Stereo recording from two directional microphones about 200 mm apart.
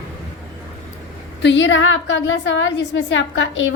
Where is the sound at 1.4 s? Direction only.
65° left (ahead or behind).